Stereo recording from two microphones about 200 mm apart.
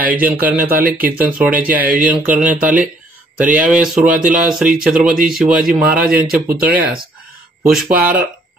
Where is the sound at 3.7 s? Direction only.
5° right (ahead or behind).